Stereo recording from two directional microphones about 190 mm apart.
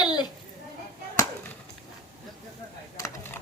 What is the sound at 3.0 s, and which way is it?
Computer keyboard, 10° left (ahead or behind).